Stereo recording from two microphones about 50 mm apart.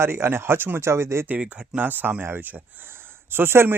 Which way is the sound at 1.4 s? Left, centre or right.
Right.